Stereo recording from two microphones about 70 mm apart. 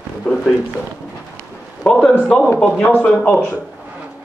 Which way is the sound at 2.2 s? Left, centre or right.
Centre.